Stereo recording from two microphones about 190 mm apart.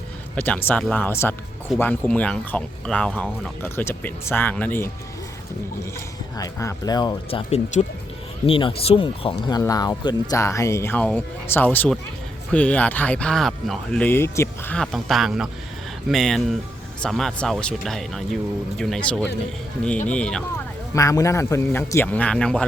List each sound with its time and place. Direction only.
0.3 s speech: 10° left (ahead or behind)
6.3 s speech: 20° left (ahead or behind)
20.9 s speech: 15° left (ahead or behind)